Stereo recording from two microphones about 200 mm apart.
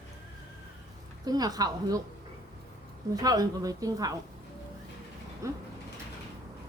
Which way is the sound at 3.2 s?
20° right (ahead or behind).